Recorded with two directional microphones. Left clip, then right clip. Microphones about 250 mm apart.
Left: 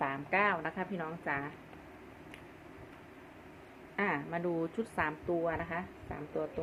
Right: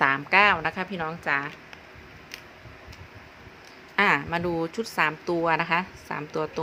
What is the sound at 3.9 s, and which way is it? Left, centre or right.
A woman's voice, right.